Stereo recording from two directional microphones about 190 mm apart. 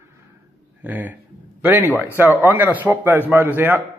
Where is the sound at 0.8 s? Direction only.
10° right (ahead or behind).